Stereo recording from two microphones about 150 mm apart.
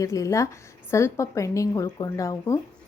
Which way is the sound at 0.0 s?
20° left (ahead or behind).